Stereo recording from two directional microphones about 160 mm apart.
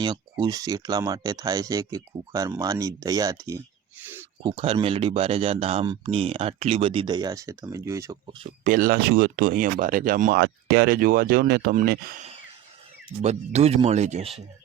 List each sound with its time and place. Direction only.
0.0 s speech: 25° right (ahead or behind)
4.0 s a sound: 15° right (ahead or behind)
4.4 s speech: 30° right (ahead or behind)
8.6 s speech: 60° right (ahead or behind)
10.3 s speech: 90° right; by 12.2 s 60° right (ahead or behind)
13.2 s speech: 40° right (ahead or behind)